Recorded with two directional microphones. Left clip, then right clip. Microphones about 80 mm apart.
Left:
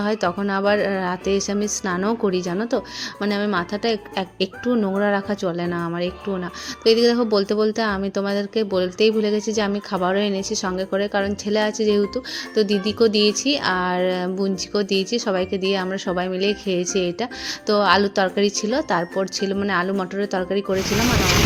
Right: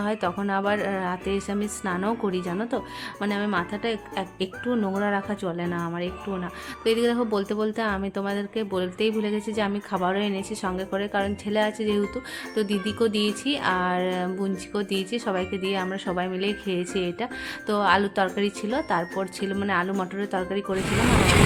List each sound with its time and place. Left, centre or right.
0.0 s speech: left